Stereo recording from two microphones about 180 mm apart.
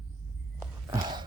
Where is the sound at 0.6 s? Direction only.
20° right (ahead or behind).